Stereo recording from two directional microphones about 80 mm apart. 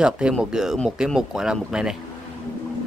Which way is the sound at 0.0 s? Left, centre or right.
Centre.